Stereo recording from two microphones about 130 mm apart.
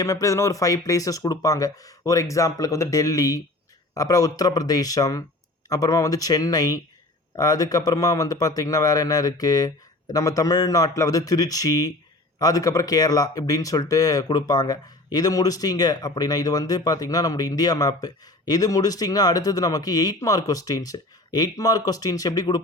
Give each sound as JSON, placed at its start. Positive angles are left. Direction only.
{"t": 0.0, "sound": "speech", "side_deg": 25}